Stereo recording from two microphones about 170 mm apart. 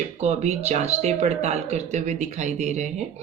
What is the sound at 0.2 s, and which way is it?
Speech, 40° right (ahead or behind).